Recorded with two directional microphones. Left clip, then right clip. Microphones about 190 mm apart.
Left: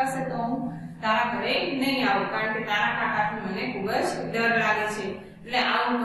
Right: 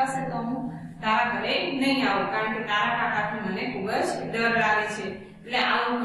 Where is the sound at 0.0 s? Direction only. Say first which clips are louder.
Even; centre (ahead or behind).